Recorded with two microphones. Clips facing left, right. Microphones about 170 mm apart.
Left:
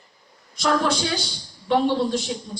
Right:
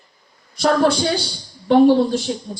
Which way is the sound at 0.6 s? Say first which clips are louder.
Right 6 dB; 40° right (ahead or behind).